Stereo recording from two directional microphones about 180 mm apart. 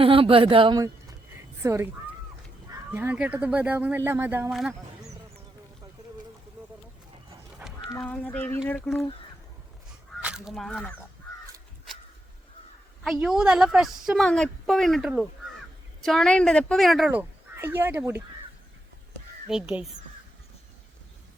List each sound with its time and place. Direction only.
0.0 s speech: 30° right (ahead or behind)
1.6 s speech: 15° right (ahead or behind)
2.9 s speech: 10° right (ahead or behind)
7.6 s dog: 10° right (ahead or behind)
8.0 s a sound: 5° left (ahead or behind)
10.2 s speech: 5° right (ahead or behind)
13.1 s a woman's voice: 5° right (ahead or behind)
19.5 s a woman's voice: 5° right (ahead or behind)